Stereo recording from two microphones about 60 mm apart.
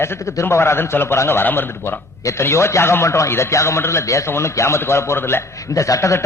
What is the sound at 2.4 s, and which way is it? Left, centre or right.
A man's voice, left.